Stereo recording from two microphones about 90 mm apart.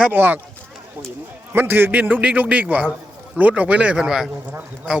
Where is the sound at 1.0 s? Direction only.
30° right (ahead or behind).